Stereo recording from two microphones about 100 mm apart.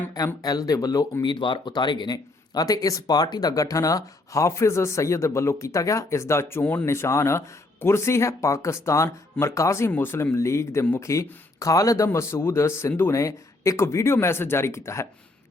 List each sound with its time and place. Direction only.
0.4 s speech: 40° left (ahead or behind)
1.2 s speech: 55° left (ahead or behind); by 15.0 s 30° left (ahead or behind)